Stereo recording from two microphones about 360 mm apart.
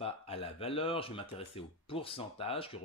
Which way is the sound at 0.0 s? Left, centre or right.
Centre.